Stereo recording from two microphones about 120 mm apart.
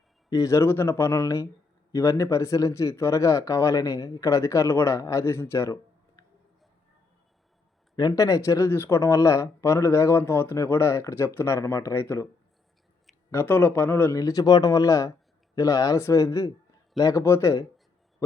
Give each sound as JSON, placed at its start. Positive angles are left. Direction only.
{"t": 0.3, "sound": "speech", "side_deg": 30}
{"t": 7.9, "sound": "speech", "side_deg": 30}
{"t": 13.3, "sound": "speech", "side_deg": 15}
{"t": 14.1, "sound": "speech", "side_deg": 30}